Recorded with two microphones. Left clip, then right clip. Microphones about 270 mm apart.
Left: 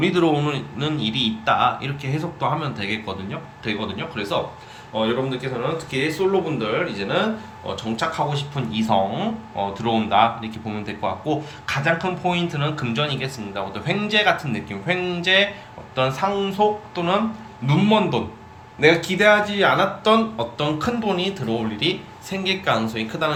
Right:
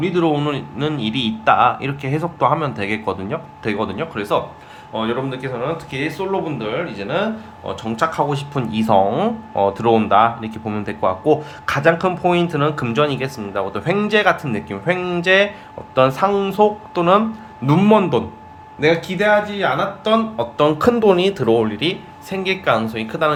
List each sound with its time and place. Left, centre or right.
0.0 s speech: centre